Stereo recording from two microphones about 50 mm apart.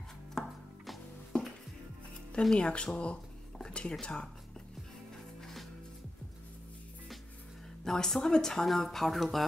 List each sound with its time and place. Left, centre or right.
0.4 s music: centre
2.5 s a sound: centre
4.0 s speech: centre
5.4 s music: centre
7.8 s speech: centre